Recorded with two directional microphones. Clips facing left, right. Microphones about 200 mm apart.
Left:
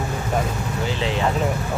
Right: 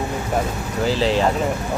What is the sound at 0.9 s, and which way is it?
Speech, 30° right (ahead or behind).